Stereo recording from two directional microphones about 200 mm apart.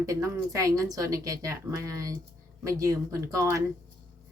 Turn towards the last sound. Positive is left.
turn(degrees=-15)  # may be behind; listen again after turning